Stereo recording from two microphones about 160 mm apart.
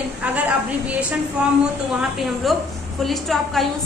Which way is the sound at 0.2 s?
10° right (ahead or behind).